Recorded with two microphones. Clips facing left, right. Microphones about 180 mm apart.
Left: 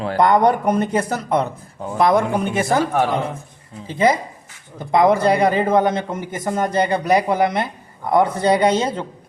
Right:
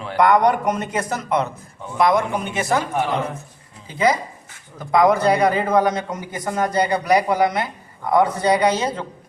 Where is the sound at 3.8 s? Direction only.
30° left (ahead or behind).